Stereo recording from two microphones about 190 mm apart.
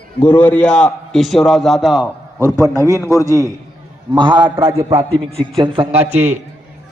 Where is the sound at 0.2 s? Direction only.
10° left (ahead or behind).